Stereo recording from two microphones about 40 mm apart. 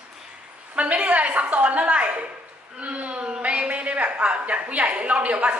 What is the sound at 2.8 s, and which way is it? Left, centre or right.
A woman's voice, right.